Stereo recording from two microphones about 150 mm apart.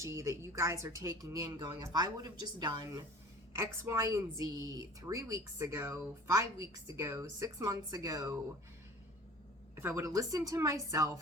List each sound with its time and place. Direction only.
0.0 s a woman's voice: 20° right (ahead or behind)
9.7 s a woman's voice: 15° right (ahead or behind)